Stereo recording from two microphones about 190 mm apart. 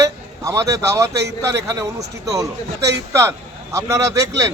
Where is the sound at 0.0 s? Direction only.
15° right (ahead or behind).